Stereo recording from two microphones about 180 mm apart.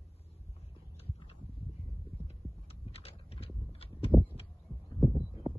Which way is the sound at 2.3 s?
35° left (ahead or behind).